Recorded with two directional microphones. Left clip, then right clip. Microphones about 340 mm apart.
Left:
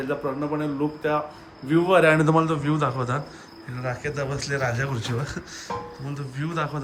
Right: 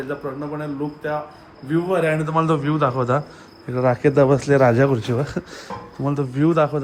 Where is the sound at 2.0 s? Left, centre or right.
Left.